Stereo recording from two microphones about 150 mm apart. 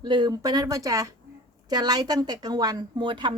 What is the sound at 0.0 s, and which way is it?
Speech, 30° right (ahead or behind).